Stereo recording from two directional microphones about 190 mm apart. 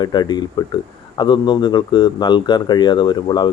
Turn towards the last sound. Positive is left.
turn(degrees=25)  # may be behind; listen again after turning